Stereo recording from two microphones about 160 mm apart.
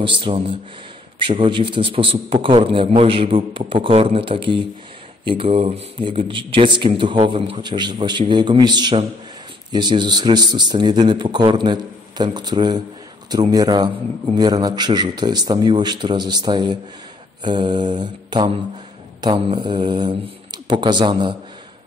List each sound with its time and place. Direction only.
0.0 s a man's voice: 30° right (ahead or behind)